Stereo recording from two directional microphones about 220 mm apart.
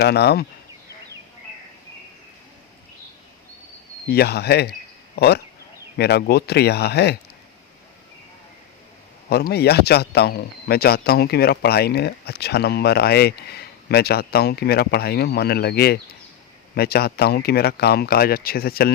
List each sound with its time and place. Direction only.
0.0 s speech: 50° left (ahead or behind)
4.1 s speech: 45° left (ahead or behind)
9.3 s speech: 45° left (ahead or behind)